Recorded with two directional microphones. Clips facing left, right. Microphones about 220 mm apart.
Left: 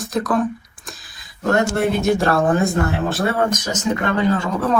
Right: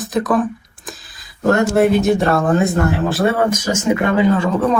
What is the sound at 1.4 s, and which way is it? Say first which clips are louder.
Speech: right 4 dB; centre (ahead or behind).